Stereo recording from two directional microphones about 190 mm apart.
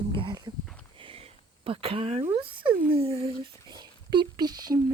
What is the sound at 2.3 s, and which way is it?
Speech, 25° right (ahead or behind).